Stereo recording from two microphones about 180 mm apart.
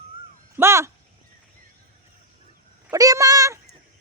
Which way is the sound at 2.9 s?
20° right (ahead or behind).